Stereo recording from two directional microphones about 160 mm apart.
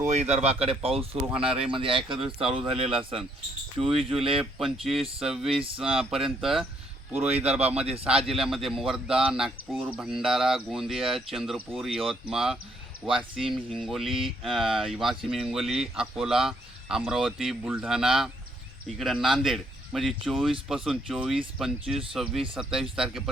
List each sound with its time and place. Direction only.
0.0 s speech: 45° right (ahead or behind)
4.5 s speech: centre (ahead or behind)
7.3 s speech: 40° right (ahead or behind)
8.2 s speech: centre (ahead or behind)